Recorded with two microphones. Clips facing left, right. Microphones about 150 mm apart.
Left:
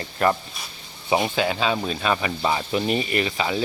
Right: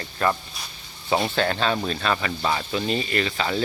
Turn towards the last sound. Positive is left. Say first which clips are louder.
# left 1 dB
turn(degrees=10)  # may be behind; listen again after turning